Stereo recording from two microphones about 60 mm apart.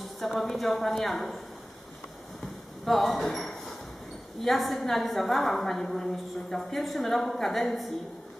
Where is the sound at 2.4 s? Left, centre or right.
Centre.